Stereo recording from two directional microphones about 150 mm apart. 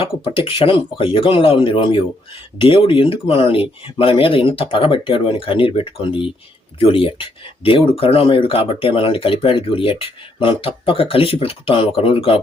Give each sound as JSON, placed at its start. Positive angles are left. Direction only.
{"t": 0.0, "sound": "speech", "side_deg": 35}